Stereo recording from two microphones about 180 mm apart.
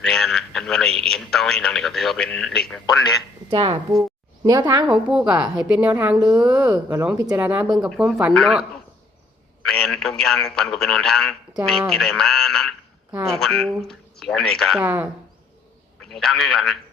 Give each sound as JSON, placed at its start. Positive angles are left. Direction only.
{"t": 0.0, "sound": "a sound", "side_deg": 5}
{"t": 3.5, "sound": "a woman's voice", "side_deg": -25}
{"t": 4.9, "sound": "a man's voice", "side_deg": -5}
{"t": 6.5, "sound": "a man's voice", "side_deg": -20}
{"t": 9.6, "sound": "a man's voice", "side_deg": 5}
{"t": 14.8, "sound": "speech", "side_deg": -10}
{"t": 16.0, "sound": "a man's voice", "side_deg": 0}